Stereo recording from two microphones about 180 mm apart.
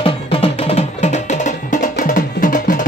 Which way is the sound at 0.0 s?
30° left (ahead or behind).